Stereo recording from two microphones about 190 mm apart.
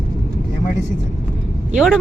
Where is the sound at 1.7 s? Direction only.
Centre (ahead or behind).